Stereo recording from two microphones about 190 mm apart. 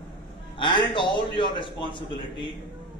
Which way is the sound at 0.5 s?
25° left (ahead or behind).